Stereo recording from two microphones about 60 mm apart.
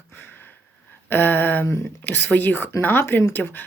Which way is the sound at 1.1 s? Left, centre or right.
Left.